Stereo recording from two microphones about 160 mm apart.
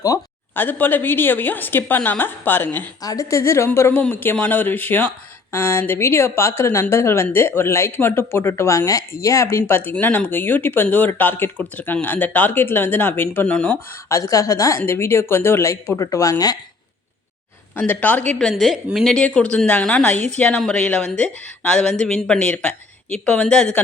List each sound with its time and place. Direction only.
0.0 s a woman's voice: 15° left (ahead or behind)
14.1 s a woman's voice: 20° left (ahead or behind)
17.7 s a woman's voice: 10° left (ahead or behind)